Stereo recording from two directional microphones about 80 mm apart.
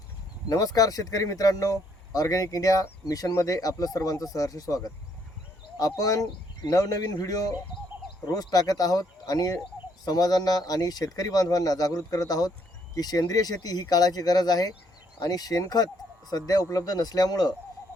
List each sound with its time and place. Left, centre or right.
0.4 s speech: left